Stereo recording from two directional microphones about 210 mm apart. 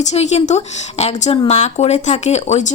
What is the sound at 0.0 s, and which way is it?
Speech, 35° left (ahead or behind).